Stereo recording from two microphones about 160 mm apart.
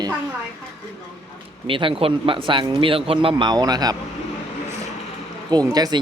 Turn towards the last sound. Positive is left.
turn(degrees=-25)  # may be behind; listen again after turning